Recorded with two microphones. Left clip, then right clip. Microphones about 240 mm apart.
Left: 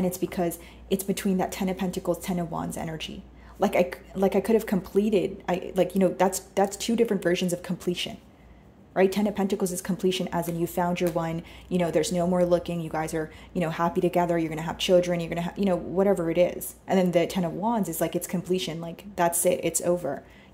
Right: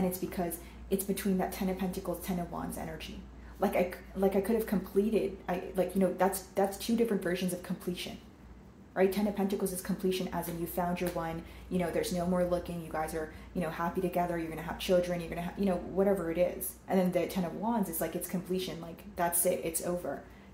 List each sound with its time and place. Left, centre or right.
0.3 s speech: left